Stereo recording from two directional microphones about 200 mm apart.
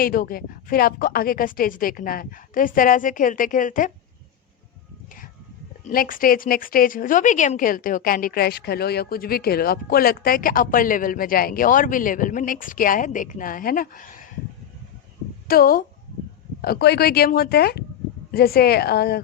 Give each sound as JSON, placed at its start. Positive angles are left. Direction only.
{"t": 0.0, "sound": "speech", "side_deg": 45}
{"t": 5.8, "sound": "speech", "side_deg": 45}
{"t": 15.4, "sound": "speech", "side_deg": 45}